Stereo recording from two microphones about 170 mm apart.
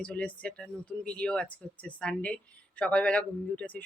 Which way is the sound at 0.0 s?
5° left (ahead or behind).